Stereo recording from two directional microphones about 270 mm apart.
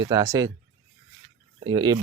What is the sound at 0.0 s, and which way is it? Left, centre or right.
Speech, centre.